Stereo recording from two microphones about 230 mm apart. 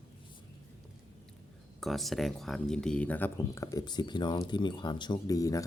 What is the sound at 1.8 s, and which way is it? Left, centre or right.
Speech, centre.